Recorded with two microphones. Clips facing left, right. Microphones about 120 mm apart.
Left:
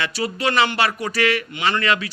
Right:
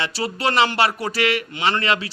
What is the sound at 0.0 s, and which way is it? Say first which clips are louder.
A man's voice: even; 30° right (ahead or behind).